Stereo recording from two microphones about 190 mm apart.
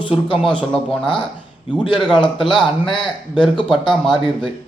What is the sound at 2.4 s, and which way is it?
A man's voice, centre (ahead or behind).